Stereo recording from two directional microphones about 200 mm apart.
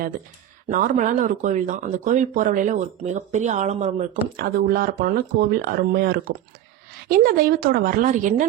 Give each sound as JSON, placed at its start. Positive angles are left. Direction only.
{"t": 0.7, "sound": "speech", "side_deg": -40}